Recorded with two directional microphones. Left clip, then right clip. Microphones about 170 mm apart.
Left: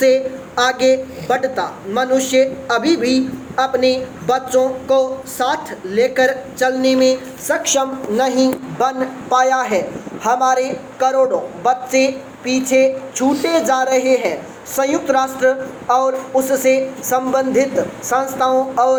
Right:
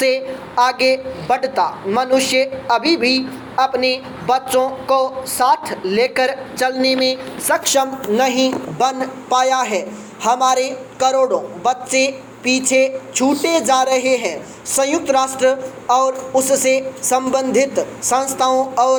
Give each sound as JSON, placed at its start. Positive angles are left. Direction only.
{"t": 0.0, "sound": "a woman's voice", "side_deg": -10}
{"t": 7.6, "sound": "a woman's voice", "side_deg": -35}